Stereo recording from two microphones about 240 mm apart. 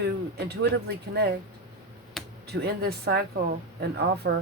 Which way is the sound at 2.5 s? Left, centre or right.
Right.